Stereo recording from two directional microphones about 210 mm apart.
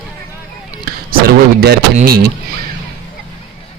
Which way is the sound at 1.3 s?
50° right (ahead or behind).